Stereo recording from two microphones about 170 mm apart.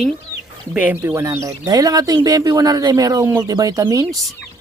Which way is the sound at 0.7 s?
10° right (ahead or behind).